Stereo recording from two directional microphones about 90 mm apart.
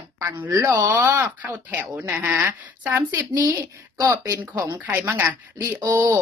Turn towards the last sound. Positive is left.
turn(degrees=-30)  # may be behind; listen again after turning